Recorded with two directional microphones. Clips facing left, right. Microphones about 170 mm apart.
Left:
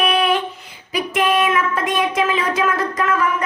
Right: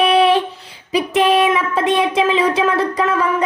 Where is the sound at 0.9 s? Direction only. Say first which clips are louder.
Right 4 dB; 30° right (ahead or behind).